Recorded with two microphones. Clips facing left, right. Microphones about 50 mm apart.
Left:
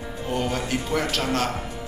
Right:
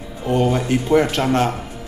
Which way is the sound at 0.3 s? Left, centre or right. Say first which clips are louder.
Right 8 dB; right.